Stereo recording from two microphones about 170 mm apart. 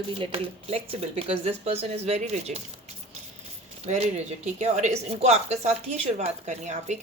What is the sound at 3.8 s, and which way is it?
Speech, 40° right (ahead or behind).